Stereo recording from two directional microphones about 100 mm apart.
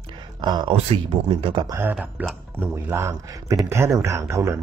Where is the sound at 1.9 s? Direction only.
10° right (ahead or behind).